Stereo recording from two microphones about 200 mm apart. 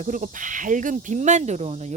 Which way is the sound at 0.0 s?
40° right (ahead or behind).